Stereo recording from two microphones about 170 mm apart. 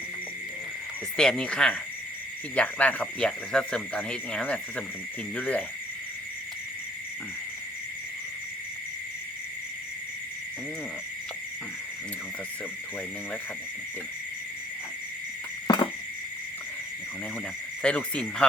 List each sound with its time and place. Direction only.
1.1 s speech: 5° left (ahead or behind)
15.6 s a sound: 25° left (ahead or behind)
17.8 s speech: 5° left (ahead or behind)